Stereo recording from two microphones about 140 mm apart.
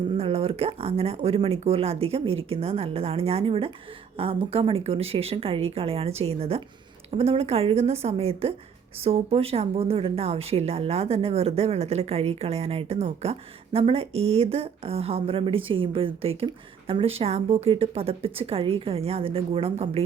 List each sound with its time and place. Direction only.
0.2 s speech: 45° right (ahead or behind)